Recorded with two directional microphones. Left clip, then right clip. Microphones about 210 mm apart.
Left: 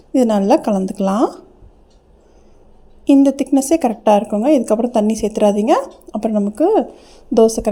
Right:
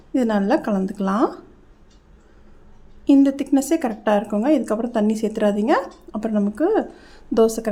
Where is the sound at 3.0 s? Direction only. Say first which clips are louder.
Left 4 dB; 15° left (ahead or behind).